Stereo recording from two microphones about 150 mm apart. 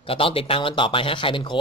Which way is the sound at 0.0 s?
40° left (ahead or behind).